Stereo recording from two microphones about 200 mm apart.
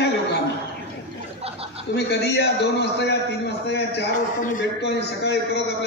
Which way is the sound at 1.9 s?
55° left (ahead or behind).